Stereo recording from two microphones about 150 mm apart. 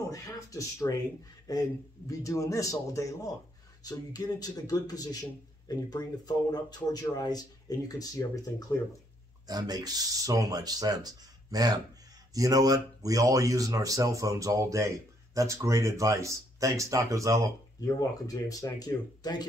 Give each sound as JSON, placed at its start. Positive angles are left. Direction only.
{"t": 0.1, "sound": "speech", "side_deg": 20}
{"t": 9.5, "sound": "speech", "side_deg": -25}
{"t": 17.7, "sound": "speech", "side_deg": 25}